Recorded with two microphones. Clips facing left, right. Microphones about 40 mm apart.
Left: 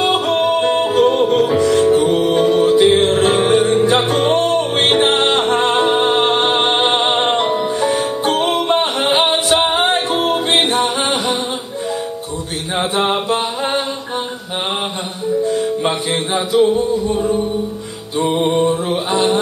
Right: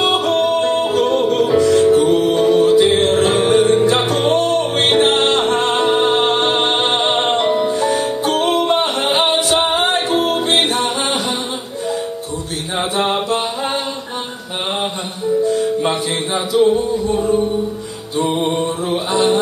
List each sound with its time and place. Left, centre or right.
0.0 s music: centre
10.2 s music: centre
13.0 s mantra: centre
15.8 s music: centre